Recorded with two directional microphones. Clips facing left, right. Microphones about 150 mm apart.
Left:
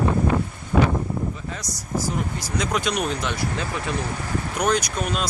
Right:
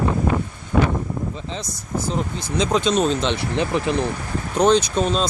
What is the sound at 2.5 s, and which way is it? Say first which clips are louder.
Speech: right 6 dB; 25° right (ahead or behind).